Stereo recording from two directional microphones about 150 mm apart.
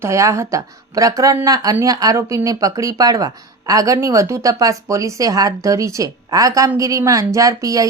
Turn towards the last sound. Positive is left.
turn(degrees=-25)  # may be behind; listen again after turning